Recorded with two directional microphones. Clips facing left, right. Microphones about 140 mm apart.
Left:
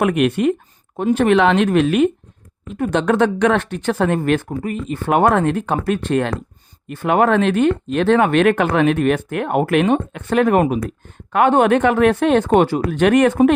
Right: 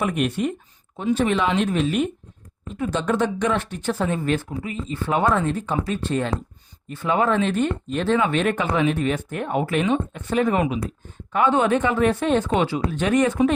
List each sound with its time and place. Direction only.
0.0 s speech: 75° left (ahead or behind)
0.9 s speech: 60° left (ahead or behind)
4.4 s speech: 50° left (ahead or behind)
4.9 s speech: 60° left (ahead or behind)
10.6 s speech: 60° left (ahead or behind)
12.9 s speech: 70° left (ahead or behind)